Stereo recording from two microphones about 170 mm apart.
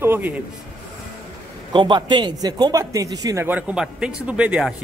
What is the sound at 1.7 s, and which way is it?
Speech, 25° right (ahead or behind).